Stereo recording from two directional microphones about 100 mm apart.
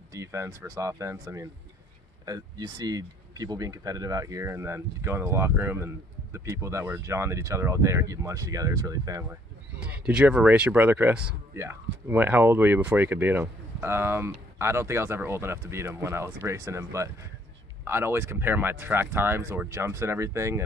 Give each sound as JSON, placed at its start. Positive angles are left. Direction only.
{"t": 0.1, "sound": "speech", "side_deg": -30}
{"t": 9.8, "sound": "speech", "side_deg": -15}